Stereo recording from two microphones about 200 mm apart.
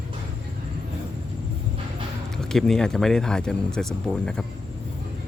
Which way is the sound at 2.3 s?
Centre (ahead or behind).